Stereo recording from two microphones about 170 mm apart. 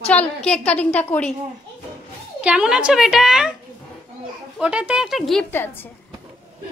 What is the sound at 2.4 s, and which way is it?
A woman's voice, 5° right (ahead or behind).